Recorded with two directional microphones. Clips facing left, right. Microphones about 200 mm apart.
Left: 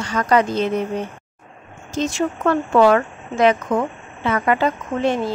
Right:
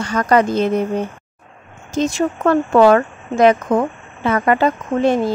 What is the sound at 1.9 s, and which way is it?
Speech, 45° right (ahead or behind).